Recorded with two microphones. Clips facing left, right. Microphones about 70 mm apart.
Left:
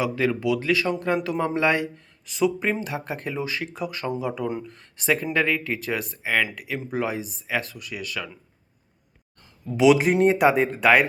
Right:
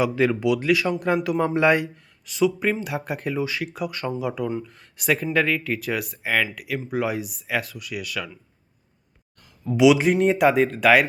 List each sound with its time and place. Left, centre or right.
0.0 s a man's voice: centre
2.2 s speech: centre
2.8 s speech: centre
9.8 s speech: left
10.2 s speech: centre